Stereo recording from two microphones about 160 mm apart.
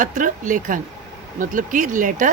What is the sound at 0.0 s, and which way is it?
Speech, 55° right (ahead or behind).